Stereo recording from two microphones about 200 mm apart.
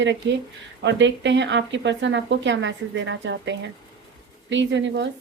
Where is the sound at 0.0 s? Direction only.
65° right (ahead or behind).